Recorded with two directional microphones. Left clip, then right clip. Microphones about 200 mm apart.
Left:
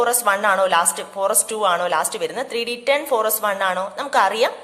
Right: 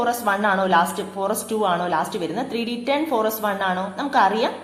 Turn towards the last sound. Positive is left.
turn(degrees=45)  # may be behind; listen again after turning